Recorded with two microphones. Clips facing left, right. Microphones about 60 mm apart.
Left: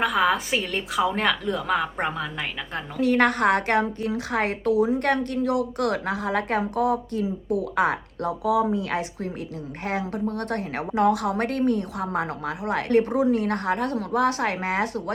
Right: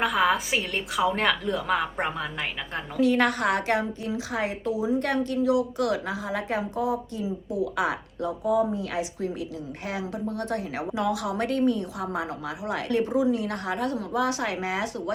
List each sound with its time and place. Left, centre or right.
0.0 s a woman's voice: centre
3.0 s a woman's voice: left
8.2 s a woman's voice: left